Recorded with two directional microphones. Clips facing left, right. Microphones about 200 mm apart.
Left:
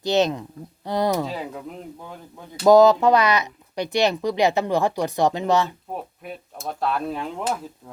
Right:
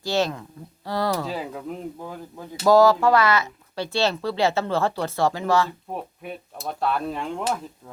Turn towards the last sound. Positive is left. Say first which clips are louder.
# even
turn(degrees=0)  # may be behind; listen again after turning